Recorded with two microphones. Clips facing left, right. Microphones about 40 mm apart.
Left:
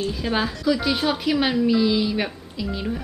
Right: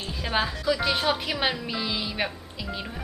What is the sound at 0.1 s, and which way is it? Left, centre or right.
A woman's voice, centre.